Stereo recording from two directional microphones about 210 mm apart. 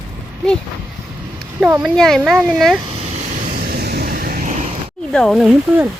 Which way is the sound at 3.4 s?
45° right (ahead or behind).